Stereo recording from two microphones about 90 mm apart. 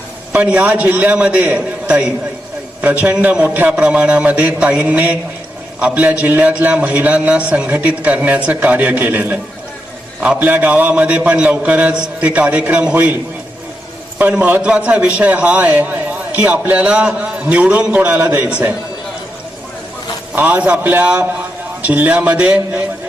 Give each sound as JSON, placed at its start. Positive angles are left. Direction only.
{"t": 0.3, "sound": "a man's voice", "side_deg": -15}
{"t": 14.2, "sound": "a man's voice", "side_deg": -15}
{"t": 20.3, "sound": "a man's voice", "side_deg": -15}